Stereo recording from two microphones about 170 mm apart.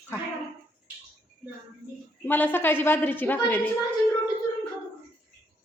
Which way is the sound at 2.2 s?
10° left (ahead or behind).